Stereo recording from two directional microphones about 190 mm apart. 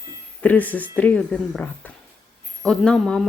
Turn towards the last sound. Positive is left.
turn(degrees=5)  # may be behind; listen again after turning